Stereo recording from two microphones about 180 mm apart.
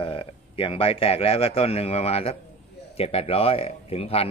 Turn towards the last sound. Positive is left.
turn(degrees=35)  # may be behind; listen again after turning